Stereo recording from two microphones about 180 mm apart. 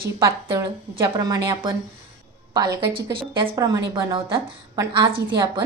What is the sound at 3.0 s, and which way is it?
A woman's voice, 25° right (ahead or behind).